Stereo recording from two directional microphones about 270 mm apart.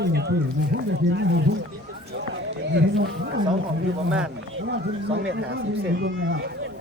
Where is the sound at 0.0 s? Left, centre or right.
Right.